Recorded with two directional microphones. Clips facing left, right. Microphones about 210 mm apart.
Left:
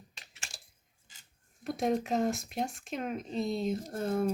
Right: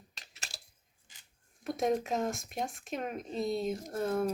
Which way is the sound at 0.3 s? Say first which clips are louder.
Right 2 dB; 40° right (ahead or behind).